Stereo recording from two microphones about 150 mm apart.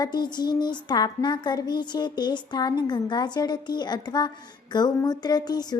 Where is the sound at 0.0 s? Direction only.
30° left (ahead or behind).